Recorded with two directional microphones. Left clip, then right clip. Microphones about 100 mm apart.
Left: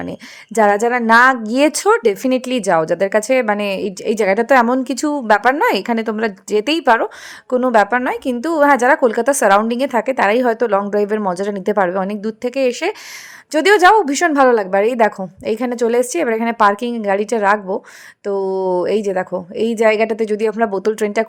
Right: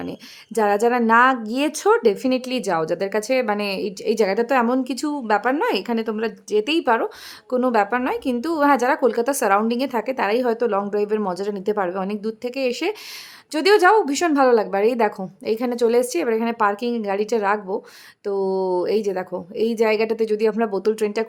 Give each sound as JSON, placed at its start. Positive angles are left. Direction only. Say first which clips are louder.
{"t": 0.5, "sound": "a woman's voice", "louder": "left 5 dB", "side_deg": 35}